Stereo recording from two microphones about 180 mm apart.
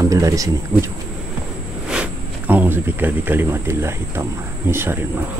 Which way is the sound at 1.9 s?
5° right (ahead or behind).